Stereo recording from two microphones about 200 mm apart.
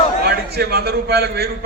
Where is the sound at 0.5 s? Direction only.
55° right (ahead or behind).